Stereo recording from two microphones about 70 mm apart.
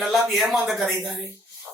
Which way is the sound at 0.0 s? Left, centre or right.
Centre.